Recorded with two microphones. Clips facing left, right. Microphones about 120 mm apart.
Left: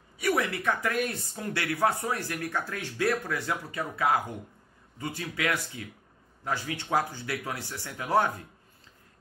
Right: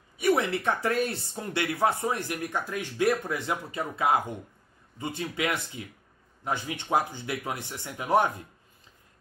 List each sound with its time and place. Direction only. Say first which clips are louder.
0.2 s speech: right 3 dB; 25° right (ahead or behind)